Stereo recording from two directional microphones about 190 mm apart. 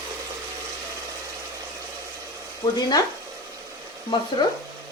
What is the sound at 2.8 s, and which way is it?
Speech, 20° left (ahead or behind).